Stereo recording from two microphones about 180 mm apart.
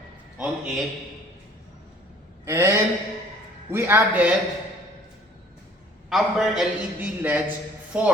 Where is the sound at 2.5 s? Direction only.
15° right (ahead or behind).